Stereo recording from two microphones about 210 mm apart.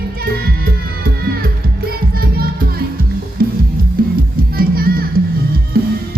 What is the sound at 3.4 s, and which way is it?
Music, 45° right (ahead or behind).